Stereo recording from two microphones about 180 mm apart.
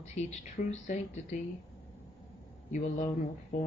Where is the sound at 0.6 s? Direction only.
50° left (ahead or behind).